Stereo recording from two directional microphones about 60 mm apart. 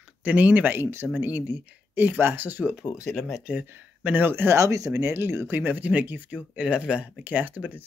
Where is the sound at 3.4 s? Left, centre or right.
Right.